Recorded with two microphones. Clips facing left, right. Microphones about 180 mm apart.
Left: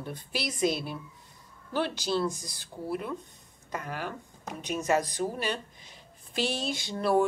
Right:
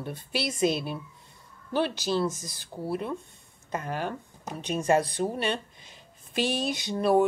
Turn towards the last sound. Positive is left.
turn(degrees=-20)  # may be behind; listen again after turning